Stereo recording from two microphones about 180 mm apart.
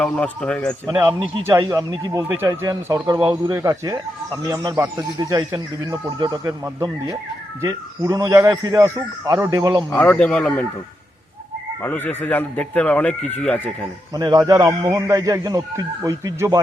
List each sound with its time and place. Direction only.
0.0 s a man's voice: 5° left (ahead or behind)
0.9 s a man's voice: 15° right (ahead or behind)
9.9 s speech: 10° left (ahead or behind)
11.8 s speech: 10° left (ahead or behind)
14.1 s a man's voice: 20° right (ahead or behind)